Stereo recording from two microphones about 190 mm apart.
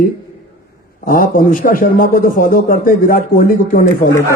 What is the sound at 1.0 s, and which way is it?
A man's voice, 45° left (ahead or behind).